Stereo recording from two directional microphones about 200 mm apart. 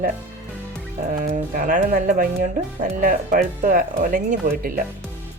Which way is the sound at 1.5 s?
40° right (ahead or behind).